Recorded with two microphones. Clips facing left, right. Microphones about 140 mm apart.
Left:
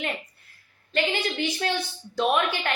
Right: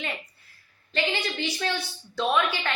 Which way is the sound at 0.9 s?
45° left (ahead or behind).